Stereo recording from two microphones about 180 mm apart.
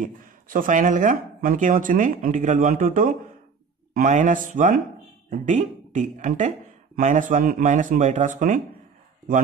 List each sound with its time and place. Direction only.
0.0 s speech: 50° right (ahead or behind)